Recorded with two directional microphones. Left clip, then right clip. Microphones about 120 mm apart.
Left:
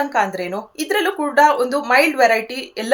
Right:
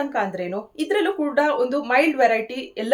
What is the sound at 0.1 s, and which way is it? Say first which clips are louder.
A woman's voice: left 5 dB; 20° right (ahead or behind).